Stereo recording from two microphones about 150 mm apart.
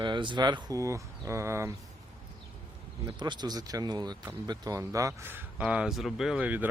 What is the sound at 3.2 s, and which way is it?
Speech, 30° right (ahead or behind).